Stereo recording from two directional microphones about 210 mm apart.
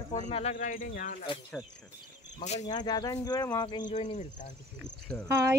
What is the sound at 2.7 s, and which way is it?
Speech, 20° left (ahead or behind).